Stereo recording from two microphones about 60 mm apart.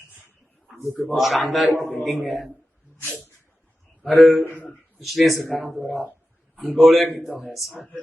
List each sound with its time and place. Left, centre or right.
0.7 s a sound: centre
1.1 s a man's voice: centre
4.4 s a man's voice: right
4.9 s a man's voice: centre